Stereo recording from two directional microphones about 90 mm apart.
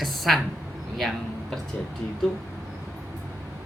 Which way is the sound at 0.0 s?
Centre (ahead or behind).